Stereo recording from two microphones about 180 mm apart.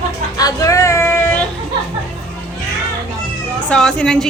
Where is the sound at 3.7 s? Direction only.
5° left (ahead or behind).